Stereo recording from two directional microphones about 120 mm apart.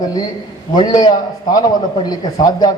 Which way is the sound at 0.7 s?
35° left (ahead or behind).